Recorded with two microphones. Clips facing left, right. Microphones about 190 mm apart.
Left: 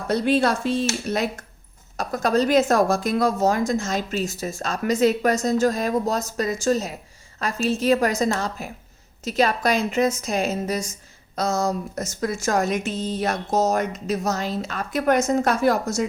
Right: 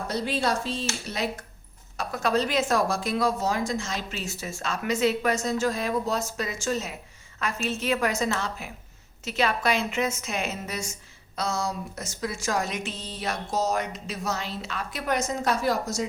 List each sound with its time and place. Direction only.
0.1 s a woman's voice: 60° left (ahead or behind)